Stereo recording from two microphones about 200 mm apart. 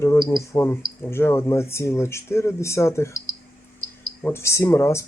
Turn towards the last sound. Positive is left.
turn(degrees=15)  # may be behind; listen again after turning